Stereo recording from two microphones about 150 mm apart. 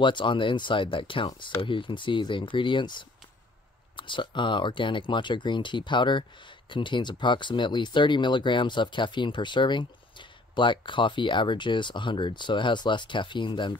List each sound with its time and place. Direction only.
0.0 s speech: 35° left (ahead or behind)